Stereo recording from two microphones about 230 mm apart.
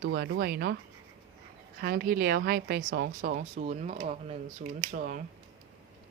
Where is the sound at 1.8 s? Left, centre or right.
Right.